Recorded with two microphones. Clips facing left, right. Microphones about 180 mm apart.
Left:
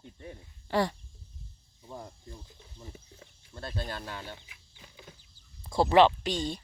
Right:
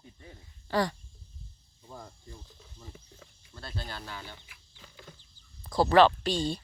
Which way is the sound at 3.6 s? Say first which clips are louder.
Left 4 dB; 50° left (ahead or behind).